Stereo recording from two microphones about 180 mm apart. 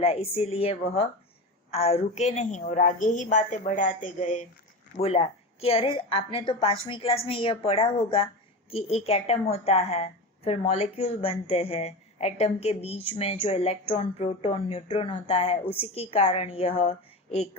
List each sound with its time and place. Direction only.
0.0 s a woman's voice: 35° left (ahead or behind)